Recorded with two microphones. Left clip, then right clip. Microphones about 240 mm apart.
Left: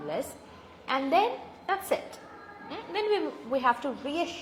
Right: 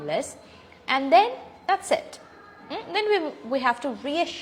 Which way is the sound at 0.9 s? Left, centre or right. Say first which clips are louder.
Right 7 dB; right.